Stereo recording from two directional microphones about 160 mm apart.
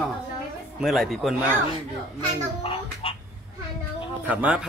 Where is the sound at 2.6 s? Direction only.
35° left (ahead or behind).